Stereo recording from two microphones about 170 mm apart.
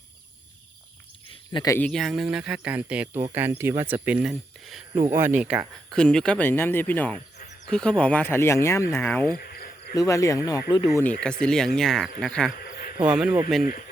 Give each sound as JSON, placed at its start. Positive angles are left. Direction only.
{"t": 1.6, "sound": "speech", "side_deg": 15}
{"t": 1.9, "sound": "speech", "side_deg": 0}
{"t": 4.9, "sound": "speech", "side_deg": -15}
{"t": 6.0, "sound": "speech", "side_deg": 5}
{"t": 9.3, "sound": "cricket", "side_deg": 60}
{"t": 9.9, "sound": "speech", "side_deg": 20}
{"t": 11.2, "sound": "speech", "side_deg": 5}
{"t": 12.5, "sound": "cricket", "side_deg": 60}
{"t": 13.0, "sound": "speech", "side_deg": -5}
{"t": 13.6, "sound": "speech", "side_deg": 55}